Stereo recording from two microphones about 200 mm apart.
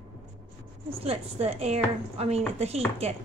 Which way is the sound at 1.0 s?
30° right (ahead or behind).